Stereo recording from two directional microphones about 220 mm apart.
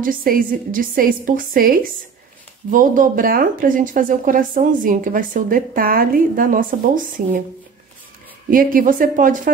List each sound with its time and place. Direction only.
0.0 s speech: 40° right (ahead or behind)
8.5 s speech: 40° right (ahead or behind)